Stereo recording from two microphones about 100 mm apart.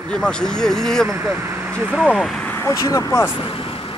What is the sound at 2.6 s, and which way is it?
Speech, 35° left (ahead or behind).